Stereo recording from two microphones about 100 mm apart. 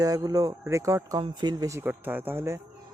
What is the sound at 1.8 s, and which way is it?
Speech, 20° right (ahead or behind).